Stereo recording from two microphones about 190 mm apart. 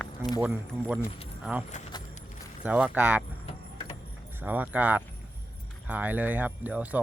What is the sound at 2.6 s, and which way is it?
Speech, 5° right (ahead or behind).